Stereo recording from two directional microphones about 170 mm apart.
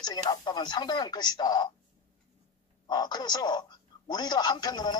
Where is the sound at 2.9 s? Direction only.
25° left (ahead or behind).